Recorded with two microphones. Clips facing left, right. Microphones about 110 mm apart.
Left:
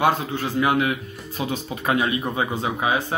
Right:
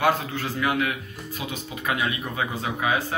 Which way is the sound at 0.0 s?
25° left (ahead or behind).